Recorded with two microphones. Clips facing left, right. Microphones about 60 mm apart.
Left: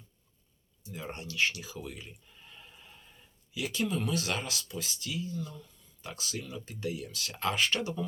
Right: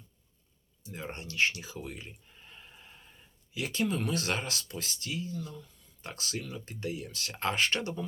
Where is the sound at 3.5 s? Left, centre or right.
Right.